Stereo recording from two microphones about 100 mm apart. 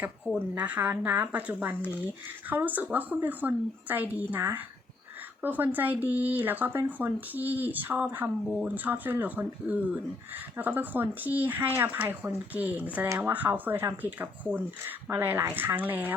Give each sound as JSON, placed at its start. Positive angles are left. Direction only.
{"t": 0.5, "sound": "speech", "side_deg": -15}